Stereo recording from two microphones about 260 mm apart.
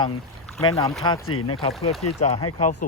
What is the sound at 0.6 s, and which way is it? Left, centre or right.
Speech, centre.